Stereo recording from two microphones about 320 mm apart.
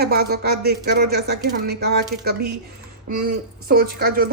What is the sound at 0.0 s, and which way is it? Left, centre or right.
A woman's voice, right.